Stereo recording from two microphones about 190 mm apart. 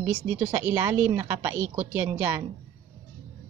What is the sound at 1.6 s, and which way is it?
Speech, 35° right (ahead or behind).